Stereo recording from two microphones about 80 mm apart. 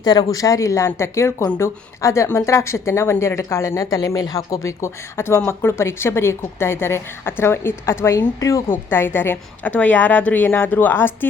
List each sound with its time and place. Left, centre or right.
0.0 s speech: left
8.7 s speech: left